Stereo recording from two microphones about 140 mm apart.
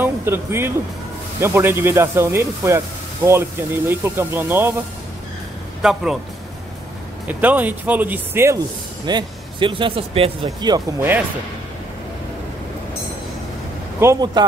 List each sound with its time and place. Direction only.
0.0 s speech: 15° right (ahead or behind)
5.8 s a man's voice: 5° right (ahead or behind)
7.2 s speech: 10° right (ahead or behind)
9.0 s speech: 35° right (ahead or behind)
10.6 s speech: 30° right (ahead or behind)
11.0 s speech: 15° right (ahead or behind)
14.0 s speech: 15° right (ahead or behind)